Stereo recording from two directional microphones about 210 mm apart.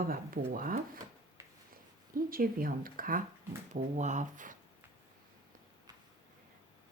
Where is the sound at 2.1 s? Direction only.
45° right (ahead or behind).